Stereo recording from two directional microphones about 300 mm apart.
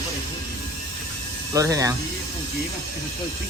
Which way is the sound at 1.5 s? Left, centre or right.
Centre.